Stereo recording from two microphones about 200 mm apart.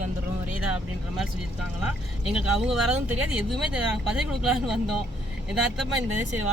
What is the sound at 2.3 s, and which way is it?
Speech, 5° right (ahead or behind).